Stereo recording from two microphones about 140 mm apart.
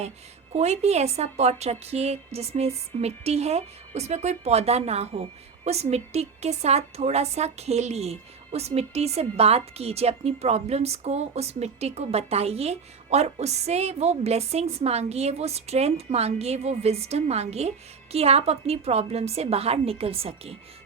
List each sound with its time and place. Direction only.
0.5 s a woman's voice: 50° right (ahead or behind)